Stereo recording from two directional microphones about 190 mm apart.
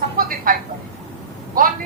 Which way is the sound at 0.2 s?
50° right (ahead or behind).